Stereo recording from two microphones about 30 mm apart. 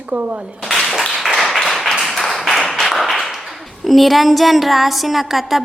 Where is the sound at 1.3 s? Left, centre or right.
Centre.